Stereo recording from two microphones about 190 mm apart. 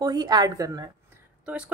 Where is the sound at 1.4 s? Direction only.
5° right (ahead or behind).